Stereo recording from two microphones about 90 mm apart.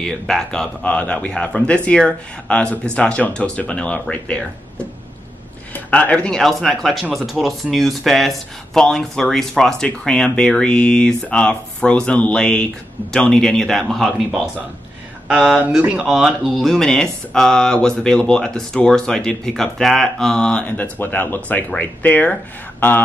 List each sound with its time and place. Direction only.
0.0 s speech: 5° left (ahead or behind)
5.9 s speech: 15° left (ahead or behind)
20.7 s speech: 20° left (ahead or behind)